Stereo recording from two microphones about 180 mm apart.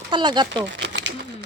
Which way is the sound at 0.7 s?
80° right.